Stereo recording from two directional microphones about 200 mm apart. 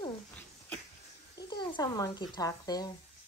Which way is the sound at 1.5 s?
20° left (ahead or behind).